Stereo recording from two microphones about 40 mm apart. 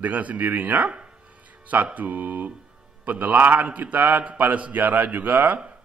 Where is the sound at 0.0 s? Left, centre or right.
Right.